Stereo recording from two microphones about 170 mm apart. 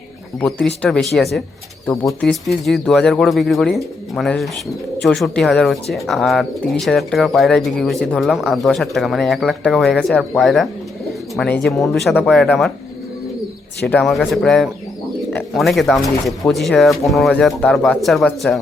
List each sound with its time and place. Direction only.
0.3 s speech: 5° left (ahead or behind)
13.8 s speech: centre (ahead or behind)